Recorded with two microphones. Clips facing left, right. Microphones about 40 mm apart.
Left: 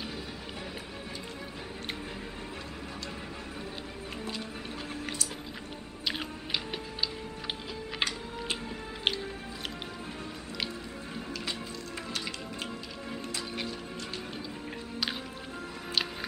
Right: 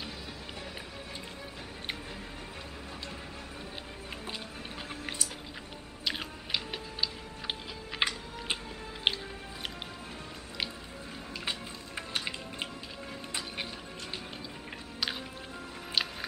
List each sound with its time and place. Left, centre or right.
6.0 s music: centre
8.0 s music: centre
12.1 s music: right
15.9 s music: centre